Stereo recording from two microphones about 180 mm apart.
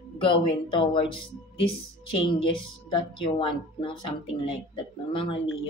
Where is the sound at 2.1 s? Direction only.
30° left (ahead or behind).